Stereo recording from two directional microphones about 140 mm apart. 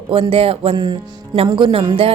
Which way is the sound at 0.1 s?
40° right (ahead or behind).